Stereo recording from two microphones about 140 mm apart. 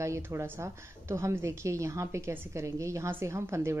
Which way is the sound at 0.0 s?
20° right (ahead or behind).